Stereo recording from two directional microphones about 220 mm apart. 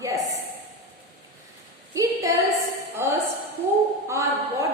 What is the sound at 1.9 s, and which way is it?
A woman's voice, 15° right (ahead or behind).